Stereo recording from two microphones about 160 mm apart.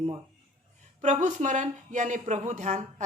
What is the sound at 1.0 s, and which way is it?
Speech, 50° right (ahead or behind).